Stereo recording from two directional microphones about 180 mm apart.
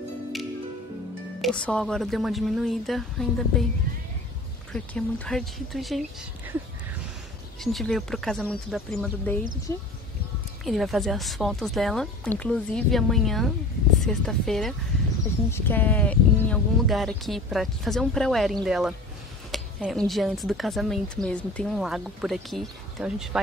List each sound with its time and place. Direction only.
1.4 s speech: 5° left (ahead or behind)
4.7 s speech: 5° left (ahead or behind)
7.6 s speech: centre (ahead or behind)
10.6 s speech: centre (ahead or behind)